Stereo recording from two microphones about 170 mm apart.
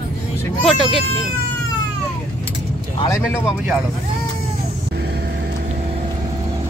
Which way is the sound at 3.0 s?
15° left (ahead or behind).